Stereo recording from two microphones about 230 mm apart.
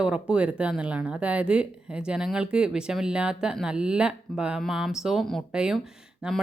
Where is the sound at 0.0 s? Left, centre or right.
Centre.